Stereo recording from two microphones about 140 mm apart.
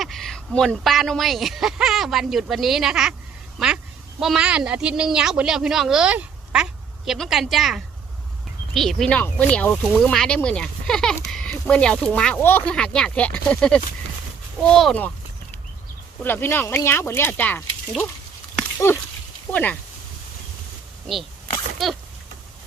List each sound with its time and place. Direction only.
0.0 s a woman's voice: centre (ahead or behind)
4.2 s a woman's voice: 5° right (ahead or behind)
16.2 s speech: 15° left (ahead or behind)
18.8 s speech: 20° left (ahead or behind)
21.8 s a woman's voice: centre (ahead or behind)